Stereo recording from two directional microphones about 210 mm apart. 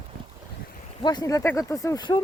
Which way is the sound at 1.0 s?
20° left (ahead or behind).